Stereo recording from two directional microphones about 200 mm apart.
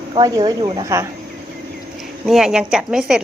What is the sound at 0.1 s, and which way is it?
Speech, 20° right (ahead or behind).